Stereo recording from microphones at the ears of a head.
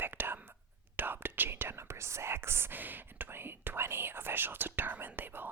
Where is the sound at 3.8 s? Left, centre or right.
Right.